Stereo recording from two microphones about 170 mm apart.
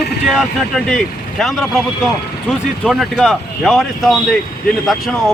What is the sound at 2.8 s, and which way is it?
Speech, centre (ahead or behind).